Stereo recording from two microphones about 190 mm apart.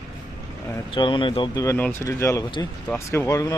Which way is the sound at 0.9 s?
25° left (ahead or behind).